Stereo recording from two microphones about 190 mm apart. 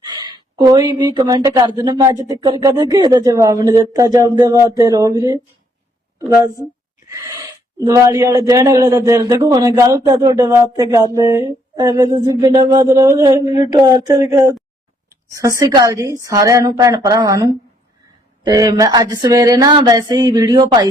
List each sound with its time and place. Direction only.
0.3 s a sound: 20° right (ahead or behind)
0.9 s a man's voice: 20° right (ahead or behind)
7.1 s gasp: 15° right (ahead or behind)
7.9 s a man's voice: 15° right (ahead or behind)